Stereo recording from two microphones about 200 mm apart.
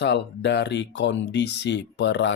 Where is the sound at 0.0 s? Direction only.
60° left (ahead or behind).